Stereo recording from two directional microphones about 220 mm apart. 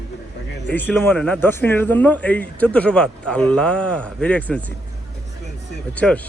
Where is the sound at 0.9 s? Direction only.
5° left (ahead or behind).